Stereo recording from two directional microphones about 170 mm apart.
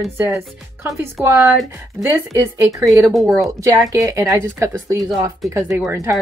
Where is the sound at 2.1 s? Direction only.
15° right (ahead or behind).